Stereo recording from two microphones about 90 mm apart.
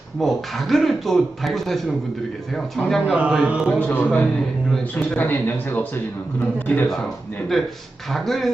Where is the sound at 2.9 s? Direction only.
Centre (ahead or behind).